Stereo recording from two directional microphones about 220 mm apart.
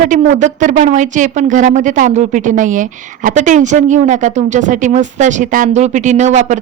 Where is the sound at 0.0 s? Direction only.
35° right (ahead or behind).